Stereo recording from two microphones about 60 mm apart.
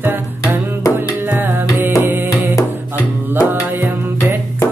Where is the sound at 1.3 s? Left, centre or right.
Right.